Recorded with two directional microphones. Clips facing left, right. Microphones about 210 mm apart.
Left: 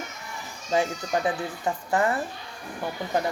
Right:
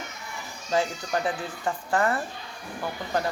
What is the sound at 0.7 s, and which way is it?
A child's voice, 20° left (ahead or behind).